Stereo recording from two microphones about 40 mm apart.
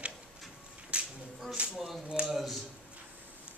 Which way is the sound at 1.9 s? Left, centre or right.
Right.